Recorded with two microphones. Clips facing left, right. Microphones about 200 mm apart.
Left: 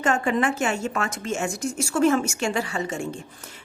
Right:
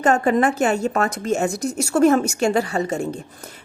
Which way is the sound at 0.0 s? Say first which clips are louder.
Right 5 dB; 40° right (ahead or behind).